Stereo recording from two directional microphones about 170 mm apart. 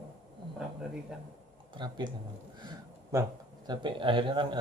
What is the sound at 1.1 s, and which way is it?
Speech, 5° right (ahead or behind).